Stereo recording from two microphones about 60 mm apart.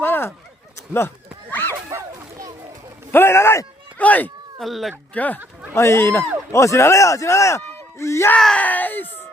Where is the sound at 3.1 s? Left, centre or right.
Left.